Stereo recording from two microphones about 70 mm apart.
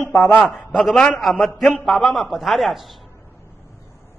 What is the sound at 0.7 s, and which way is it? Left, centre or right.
A man's voice, centre.